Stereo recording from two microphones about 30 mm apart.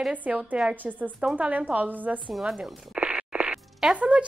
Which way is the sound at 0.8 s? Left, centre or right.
Right.